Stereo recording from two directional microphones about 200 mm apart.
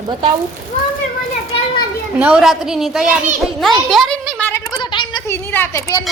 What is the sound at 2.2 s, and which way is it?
A woman's voice, 5° right (ahead or behind).